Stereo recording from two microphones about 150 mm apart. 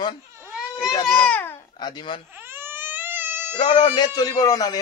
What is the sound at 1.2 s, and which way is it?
Babbling, 10° left (ahead or behind).